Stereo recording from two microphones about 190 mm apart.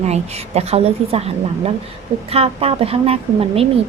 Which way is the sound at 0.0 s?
35° right (ahead or behind).